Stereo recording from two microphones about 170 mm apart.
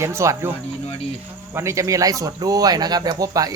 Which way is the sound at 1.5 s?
15° right (ahead or behind).